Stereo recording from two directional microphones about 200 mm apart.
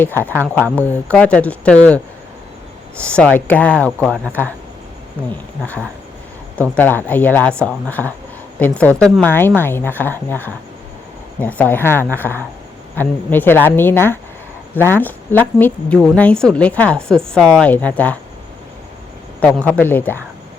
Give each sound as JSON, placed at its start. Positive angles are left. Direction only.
{"t": 0.2, "sound": "speech", "side_deg": -10}
{"t": 0.4, "sound": "a woman's voice", "side_deg": 5}
{"t": 3.1, "sound": "a woman's voice", "side_deg": 5}
{"t": 6.6, "sound": "a woman's voice", "side_deg": 10}
{"t": 19.4, "sound": "a woman's voice", "side_deg": 5}